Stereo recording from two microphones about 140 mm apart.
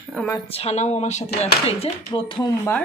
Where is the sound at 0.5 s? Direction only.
45° left (ahead or behind).